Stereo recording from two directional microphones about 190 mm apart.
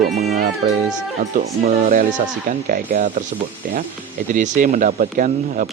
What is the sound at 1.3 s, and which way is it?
Speech, 45° right (ahead or behind).